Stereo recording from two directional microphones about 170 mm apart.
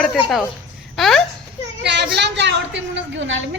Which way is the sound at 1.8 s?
90° right.